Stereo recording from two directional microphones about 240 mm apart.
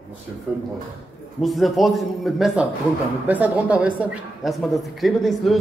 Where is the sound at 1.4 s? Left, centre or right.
Centre.